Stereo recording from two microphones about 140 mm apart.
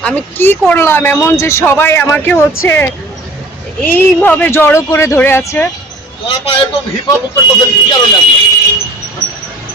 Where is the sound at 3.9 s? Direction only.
10° left (ahead or behind).